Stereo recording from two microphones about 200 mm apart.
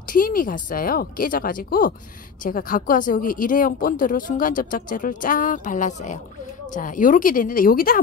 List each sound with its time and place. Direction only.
0.1 s speech: 45° left (ahead or behind)